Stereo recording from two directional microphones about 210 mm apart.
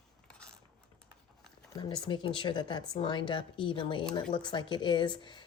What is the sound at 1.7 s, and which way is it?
Speech, 20° left (ahead or behind).